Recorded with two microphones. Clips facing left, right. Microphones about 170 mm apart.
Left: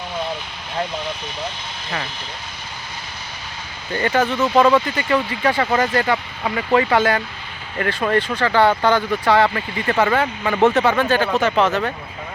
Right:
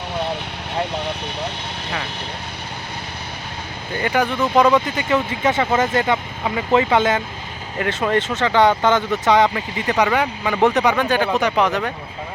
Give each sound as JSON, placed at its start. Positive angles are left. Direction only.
{"t": 0.9, "sound": "speech", "side_deg": -65}
{"t": 3.9, "sound": "speech", "side_deg": -15}
{"t": 6.4, "sound": "speech", "side_deg": -10}
{"t": 6.7, "sound": "speech", "side_deg": -20}